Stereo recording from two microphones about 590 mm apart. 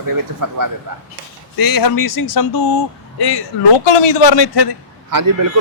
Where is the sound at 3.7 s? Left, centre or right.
Left.